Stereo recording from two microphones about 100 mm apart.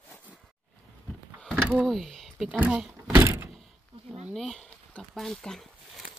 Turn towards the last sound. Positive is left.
turn(degrees=0)  # may be behind; listen again after turning